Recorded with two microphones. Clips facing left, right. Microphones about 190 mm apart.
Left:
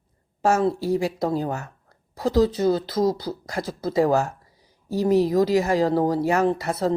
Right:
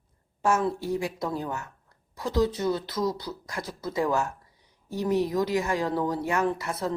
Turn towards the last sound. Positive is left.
turn(degrees=35)  # may be behind; listen again after turning